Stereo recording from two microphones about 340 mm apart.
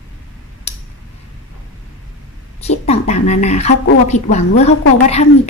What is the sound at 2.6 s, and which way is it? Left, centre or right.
A woman's voice, centre.